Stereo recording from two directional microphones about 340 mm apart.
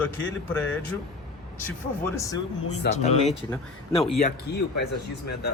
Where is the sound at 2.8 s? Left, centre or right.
Left.